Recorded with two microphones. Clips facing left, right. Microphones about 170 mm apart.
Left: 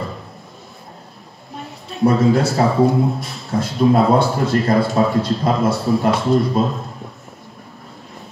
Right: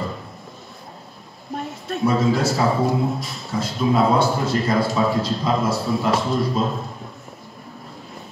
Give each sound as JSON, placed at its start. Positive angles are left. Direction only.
{"t": 1.6, "sound": "a man's voice", "side_deg": 0}